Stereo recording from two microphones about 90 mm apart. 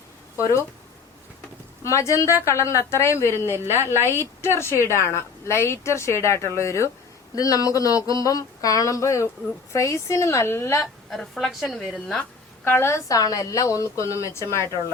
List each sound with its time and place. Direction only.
0.3 s speech: 35° left (ahead or behind)
1.8 s a woman's voice: 35° left (ahead or behind)
10.8 s a woman's voice: centre (ahead or behind)
12.6 s a woman's voice: 30° left (ahead or behind)